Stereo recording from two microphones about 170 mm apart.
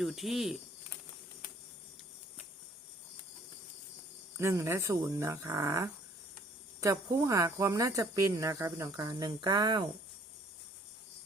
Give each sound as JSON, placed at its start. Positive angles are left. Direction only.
{"t": 0.0, "sound": "cricket", "side_deg": 0}
{"t": 4.4, "sound": "speech", "side_deg": -15}